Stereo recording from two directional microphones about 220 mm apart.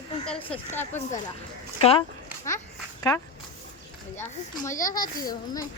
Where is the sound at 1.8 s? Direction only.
25° left (ahead or behind).